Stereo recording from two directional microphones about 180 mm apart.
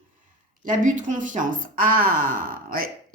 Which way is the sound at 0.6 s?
45° right (ahead or behind).